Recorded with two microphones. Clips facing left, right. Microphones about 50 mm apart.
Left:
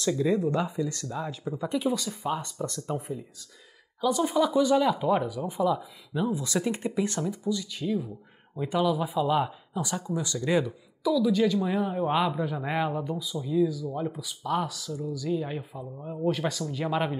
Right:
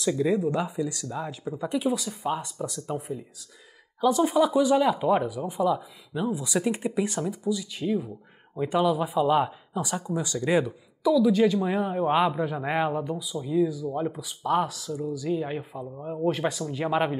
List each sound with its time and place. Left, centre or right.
0.0 s speech: centre
13.7 s speech: right
13.9 s speech: centre
15.2 s speech: centre
16.3 s speech: right